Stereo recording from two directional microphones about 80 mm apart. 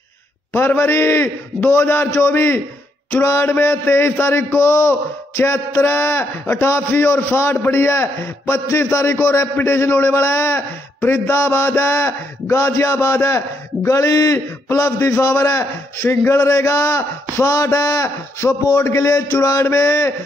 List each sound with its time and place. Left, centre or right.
0.5 s a man's voice: left